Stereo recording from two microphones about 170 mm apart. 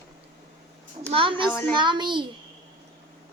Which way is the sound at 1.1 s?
30° right (ahead or behind).